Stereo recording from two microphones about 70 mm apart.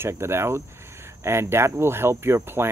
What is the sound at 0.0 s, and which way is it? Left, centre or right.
Speech, right.